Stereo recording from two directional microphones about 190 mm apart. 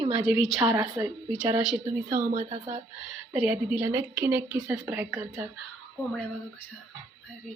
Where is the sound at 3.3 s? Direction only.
5° right (ahead or behind).